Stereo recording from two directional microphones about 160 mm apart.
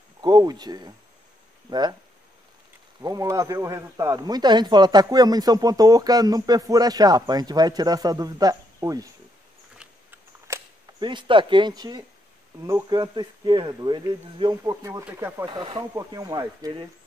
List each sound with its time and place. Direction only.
0.2 s a man's voice: 25° right (ahead or behind)
3.0 s a man's voice: 20° right (ahead or behind)
9.8 s biting: 10° right (ahead or behind)
11.0 s a man's voice: 30° right (ahead or behind)
15.4 s a man's voice: 30° right (ahead or behind)
15.8 s a man's voice: 20° right (ahead or behind)